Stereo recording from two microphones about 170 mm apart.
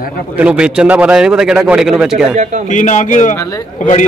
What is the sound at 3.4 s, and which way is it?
Speech, 20° left (ahead or behind).